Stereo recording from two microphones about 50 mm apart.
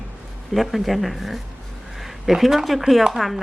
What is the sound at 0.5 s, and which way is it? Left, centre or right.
Speech, centre.